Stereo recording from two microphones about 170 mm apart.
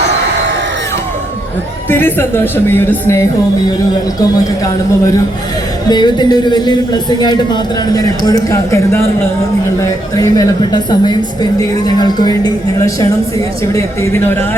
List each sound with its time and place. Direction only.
1.9 s speech: 10° left (ahead or behind)
5.9 s speech: 25° left (ahead or behind)